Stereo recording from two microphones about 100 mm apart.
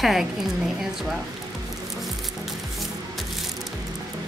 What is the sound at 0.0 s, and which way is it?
Speech, centre (ahead or behind).